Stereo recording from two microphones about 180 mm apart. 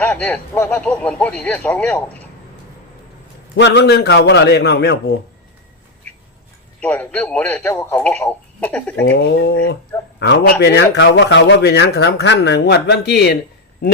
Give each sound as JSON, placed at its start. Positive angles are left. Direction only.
{"t": 0.0, "sound": "speech", "side_deg": 10}
{"t": 3.5, "sound": "a man's voice", "side_deg": 75}
{"t": 6.8, "sound": "speech", "side_deg": 10}
{"t": 9.0, "sound": "speech", "side_deg": 80}
{"t": 10.2, "sound": "a man's voice", "side_deg": 70}